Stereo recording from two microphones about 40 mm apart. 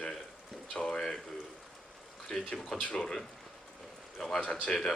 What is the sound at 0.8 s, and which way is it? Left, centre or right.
Speech, centre.